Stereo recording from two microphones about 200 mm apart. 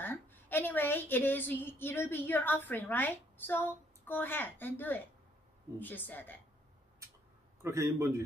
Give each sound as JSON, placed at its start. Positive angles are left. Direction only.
{"t": 0.0, "sound": "a woman's voice", "side_deg": 10}
{"t": 7.6, "sound": "a man's voice", "side_deg": -15}